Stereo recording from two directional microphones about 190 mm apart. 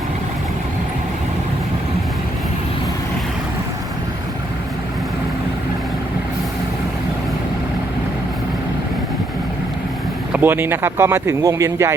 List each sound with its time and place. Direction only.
10.3 s speech: 10° right (ahead or behind)